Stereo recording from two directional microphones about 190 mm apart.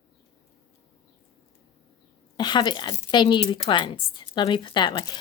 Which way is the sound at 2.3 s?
25° left (ahead or behind).